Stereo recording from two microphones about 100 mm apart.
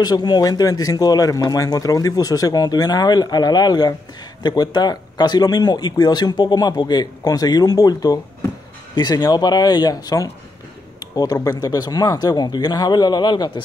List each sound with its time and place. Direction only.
0.0 s speech: 40° left (ahead or behind)
11.6 s speech: 40° left (ahead or behind)